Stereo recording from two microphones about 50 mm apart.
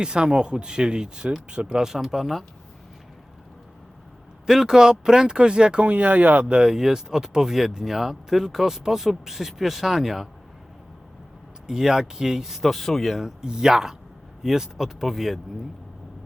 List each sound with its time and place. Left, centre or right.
0.0 s speech: centre
4.4 s speech: centre; by 6.4 s right
6.4 s speech: centre
11.7 s speech: centre
12.7 s speech: centre
13.2 s speech: centre